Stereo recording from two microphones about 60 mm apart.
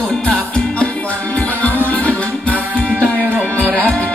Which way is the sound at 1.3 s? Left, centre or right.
Left.